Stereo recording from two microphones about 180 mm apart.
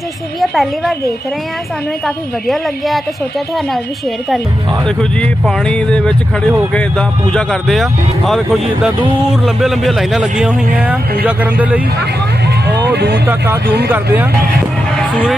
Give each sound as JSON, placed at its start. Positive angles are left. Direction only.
{"t": 0.4, "sound": "speech", "side_deg": 0}
{"t": 2.0, "sound": "speech", "side_deg": 0}
{"t": 4.8, "sound": "a man's voice", "side_deg": 5}
{"t": 12.9, "sound": "speech", "side_deg": -65}
{"t": 13.3, "sound": "a man's voice", "side_deg": -10}
{"t": 15.0, "sound": "music", "side_deg": 5}